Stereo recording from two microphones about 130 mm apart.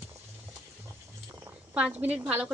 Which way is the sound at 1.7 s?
10° right (ahead or behind).